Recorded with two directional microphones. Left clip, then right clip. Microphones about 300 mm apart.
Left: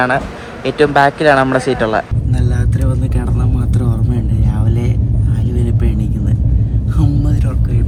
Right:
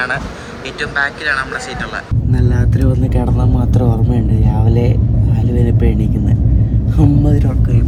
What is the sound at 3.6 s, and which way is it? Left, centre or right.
Vehicle, right.